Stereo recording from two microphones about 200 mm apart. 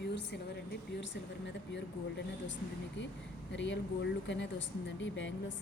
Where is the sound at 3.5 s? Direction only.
65° left (ahead or behind).